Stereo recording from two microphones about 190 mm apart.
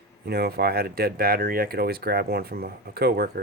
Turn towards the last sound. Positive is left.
turn(degrees=-55)  # may be behind; listen again after turning